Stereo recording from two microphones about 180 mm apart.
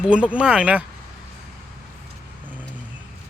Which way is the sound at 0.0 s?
5° right (ahead or behind).